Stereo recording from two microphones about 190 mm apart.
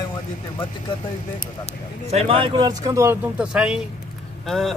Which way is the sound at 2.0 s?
30° right (ahead or behind).